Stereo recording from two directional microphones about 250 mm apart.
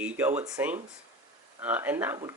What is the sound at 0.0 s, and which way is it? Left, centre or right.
Speech, centre.